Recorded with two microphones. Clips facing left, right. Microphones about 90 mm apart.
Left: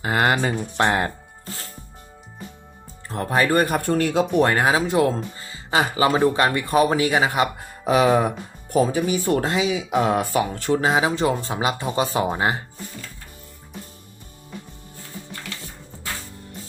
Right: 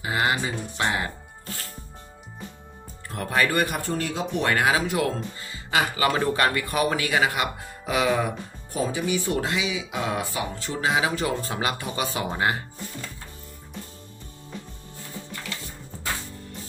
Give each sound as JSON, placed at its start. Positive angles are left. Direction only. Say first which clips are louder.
{"t": 0.0, "sound": "speech", "louder": "left 5 dB", "side_deg": 50}
{"t": 3.1, "sound": "speech", "louder": "left 4 dB", "side_deg": 30}
{"t": 3.8, "sound": "speech", "louder": "left 8 dB", "side_deg": 60}
{"t": 4.4, "sound": "speech", "louder": "left 3 dB", "side_deg": 30}
{"t": 7.9, "sound": "speech", "louder": "left 6 dB", "side_deg": 40}
{"t": 8.7, "sound": "speech", "louder": "left 6 dB", "side_deg": 50}
{"t": 10.3, "sound": "speech", "louder": "left 9 dB", "side_deg": 60}
{"t": 10.8, "sound": "speech", "louder": "left 2 dB", "side_deg": 35}